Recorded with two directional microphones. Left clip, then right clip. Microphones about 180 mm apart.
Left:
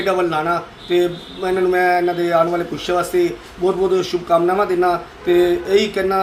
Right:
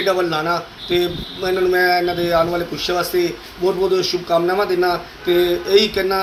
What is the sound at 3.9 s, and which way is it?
Speech, 30° left (ahead or behind).